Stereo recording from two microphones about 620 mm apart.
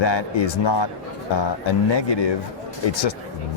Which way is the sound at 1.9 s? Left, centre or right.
Left.